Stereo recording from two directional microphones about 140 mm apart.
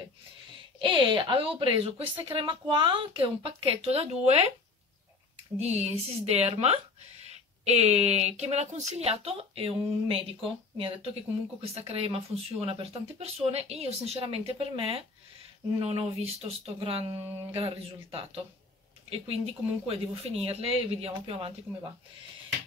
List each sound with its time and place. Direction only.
0.7 s a woman's voice: 35° right (ahead or behind)
5.6 s speech: 50° right (ahead or behind)